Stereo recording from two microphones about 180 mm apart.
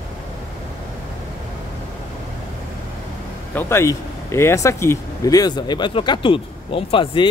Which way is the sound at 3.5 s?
10° left (ahead or behind).